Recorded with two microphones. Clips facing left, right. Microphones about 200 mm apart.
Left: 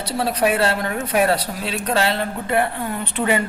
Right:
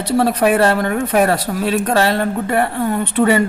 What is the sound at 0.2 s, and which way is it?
Speech, 50° right (ahead or behind).